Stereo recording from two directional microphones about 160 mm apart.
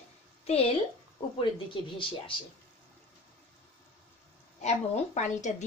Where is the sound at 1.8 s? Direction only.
30° left (ahead or behind).